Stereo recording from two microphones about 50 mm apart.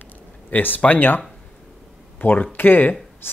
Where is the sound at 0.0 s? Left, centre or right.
Left.